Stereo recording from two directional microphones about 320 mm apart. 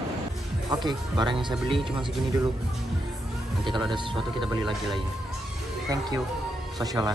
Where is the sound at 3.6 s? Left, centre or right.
Centre.